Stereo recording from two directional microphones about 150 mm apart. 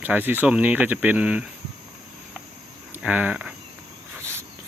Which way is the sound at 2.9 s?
10° right (ahead or behind).